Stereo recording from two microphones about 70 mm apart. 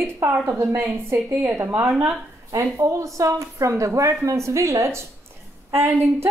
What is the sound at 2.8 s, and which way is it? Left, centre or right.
A woman's voice, right.